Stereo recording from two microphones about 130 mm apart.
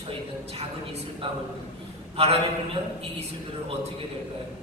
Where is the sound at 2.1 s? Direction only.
50° right (ahead or behind).